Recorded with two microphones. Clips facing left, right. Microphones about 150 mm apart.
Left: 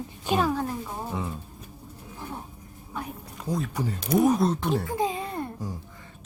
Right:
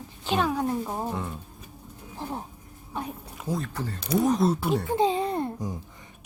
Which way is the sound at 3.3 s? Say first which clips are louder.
Left 1 dB; centre (ahead or behind).